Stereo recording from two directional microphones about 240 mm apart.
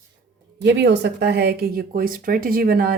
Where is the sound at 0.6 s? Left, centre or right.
Right.